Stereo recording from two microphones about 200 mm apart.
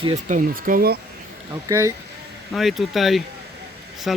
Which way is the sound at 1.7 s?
15° right (ahead or behind).